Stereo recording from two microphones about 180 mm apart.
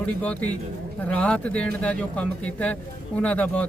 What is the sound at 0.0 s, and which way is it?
Speech, 10° left (ahead or behind).